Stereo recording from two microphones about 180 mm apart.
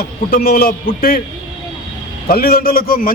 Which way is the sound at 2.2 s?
55° left (ahead or behind).